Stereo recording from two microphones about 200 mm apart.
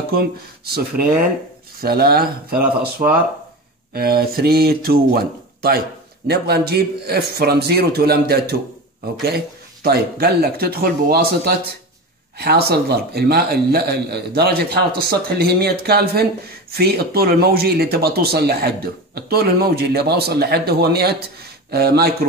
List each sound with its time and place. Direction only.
1.8 s speech: 50° right (ahead or behind)
2.6 s speech: 10° right (ahead or behind)
3.9 s speech: 50° right (ahead or behind)
9.8 s speech: 50° right (ahead or behind)